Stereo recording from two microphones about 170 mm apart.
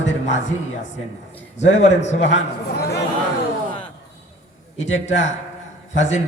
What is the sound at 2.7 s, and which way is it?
Chatter, 70° left (ahead or behind).